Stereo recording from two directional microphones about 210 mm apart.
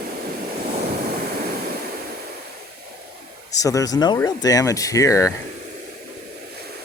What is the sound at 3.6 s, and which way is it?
Speech, 15° left (ahead or behind).